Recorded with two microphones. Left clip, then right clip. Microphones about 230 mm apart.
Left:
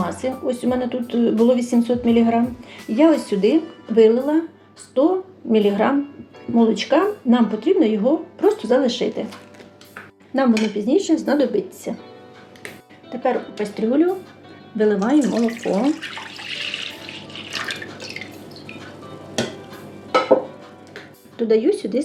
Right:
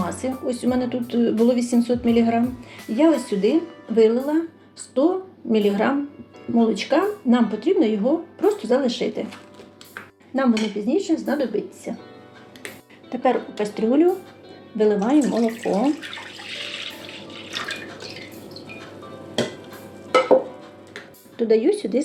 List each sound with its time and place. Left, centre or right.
0.0 s speech: centre
10.3 s speech: centre
13.1 s speech: centre
21.3 s speech: centre